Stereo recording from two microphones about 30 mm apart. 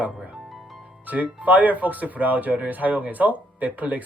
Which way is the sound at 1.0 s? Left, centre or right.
Right.